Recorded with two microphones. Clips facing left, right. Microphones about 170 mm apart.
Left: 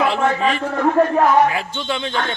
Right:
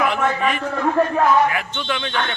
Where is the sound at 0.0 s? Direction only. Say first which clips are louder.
Left 2 dB; 30° left (ahead or behind).